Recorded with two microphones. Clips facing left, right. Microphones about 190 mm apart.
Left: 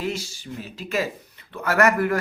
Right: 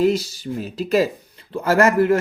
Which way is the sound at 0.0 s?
40° right (ahead or behind).